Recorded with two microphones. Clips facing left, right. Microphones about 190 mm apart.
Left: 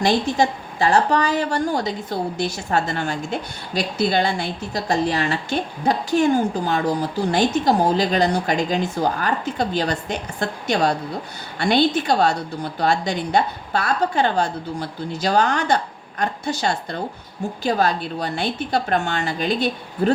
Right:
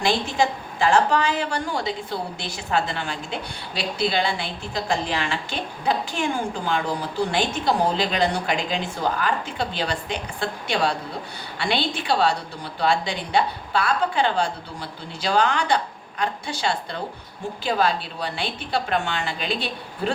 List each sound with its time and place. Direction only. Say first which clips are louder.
0.0 s a woman's voice: left 3 dB; 40° left (ahead or behind)